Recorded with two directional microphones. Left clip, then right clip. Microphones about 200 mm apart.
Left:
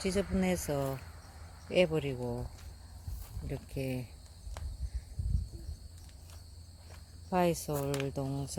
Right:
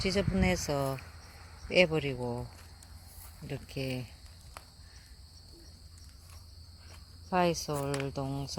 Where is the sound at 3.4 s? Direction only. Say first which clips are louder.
Right 1 dB; centre (ahead or behind).